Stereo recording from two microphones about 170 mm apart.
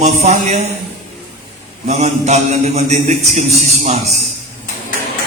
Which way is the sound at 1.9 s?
40° right (ahead or behind).